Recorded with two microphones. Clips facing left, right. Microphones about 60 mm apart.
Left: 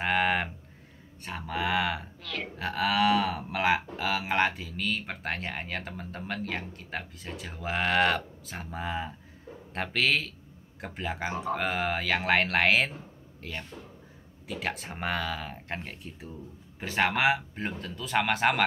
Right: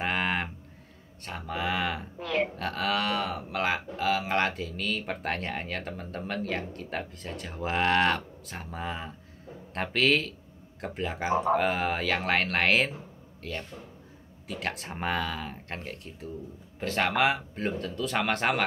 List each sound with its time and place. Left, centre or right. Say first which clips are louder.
0.0 s cattle: left 2 dB; centre
1.2 s speech: left 1 dB; centre
2.1 s a sound: right 9 dB; right
2.5 s speech: left 1 dB; centre